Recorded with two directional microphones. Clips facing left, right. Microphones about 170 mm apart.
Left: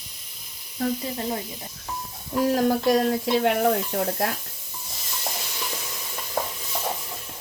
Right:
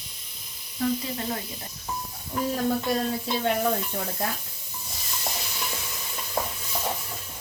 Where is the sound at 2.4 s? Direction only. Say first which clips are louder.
Left 5 dB; 80° left.